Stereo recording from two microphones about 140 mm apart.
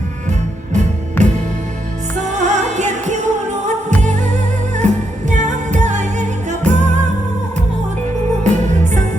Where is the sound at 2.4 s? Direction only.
60° right (ahead or behind).